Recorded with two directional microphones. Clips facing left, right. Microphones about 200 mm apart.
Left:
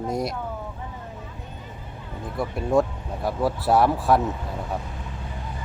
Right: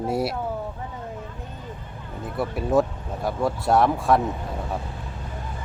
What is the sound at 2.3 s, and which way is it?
Speech, 5° right (ahead or behind).